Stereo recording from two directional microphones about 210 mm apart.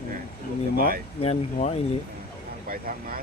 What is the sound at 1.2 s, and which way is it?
Speech, 30° left (ahead or behind).